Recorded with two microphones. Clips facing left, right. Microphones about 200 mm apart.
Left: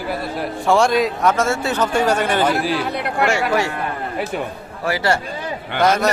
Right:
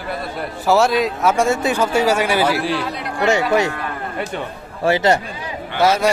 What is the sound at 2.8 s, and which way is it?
Speech, 60° left (ahead or behind).